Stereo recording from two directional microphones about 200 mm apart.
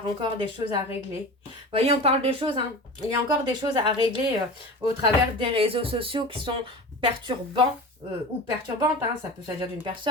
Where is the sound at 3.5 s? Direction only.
25° right (ahead or behind).